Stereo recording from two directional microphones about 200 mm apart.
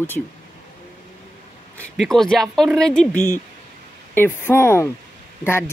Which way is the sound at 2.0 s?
Centre (ahead or behind).